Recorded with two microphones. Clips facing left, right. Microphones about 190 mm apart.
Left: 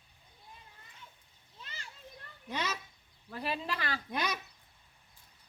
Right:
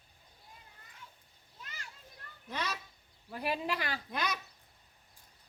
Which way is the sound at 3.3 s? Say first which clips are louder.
Right 2 dB; 15° right (ahead or behind).